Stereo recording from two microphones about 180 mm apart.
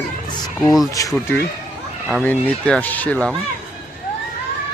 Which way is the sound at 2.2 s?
5° left (ahead or behind).